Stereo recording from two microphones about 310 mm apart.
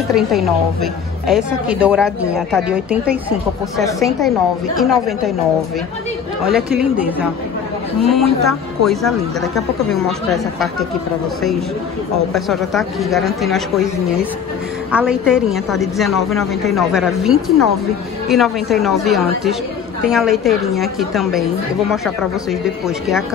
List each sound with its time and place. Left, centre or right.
0.1 s speech: centre
6.4 s speech: centre
12.3 s speech: centre
14.9 s speech: centre